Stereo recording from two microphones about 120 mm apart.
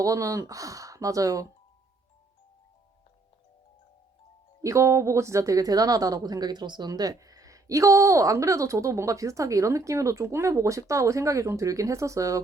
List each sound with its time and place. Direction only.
0.0 s speech: 30° right (ahead or behind)
4.6 s speech: 25° right (ahead or behind)